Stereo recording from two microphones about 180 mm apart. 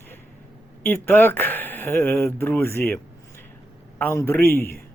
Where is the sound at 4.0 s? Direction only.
15° left (ahead or behind).